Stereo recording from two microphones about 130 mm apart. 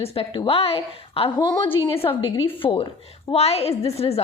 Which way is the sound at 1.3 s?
30° left (ahead or behind).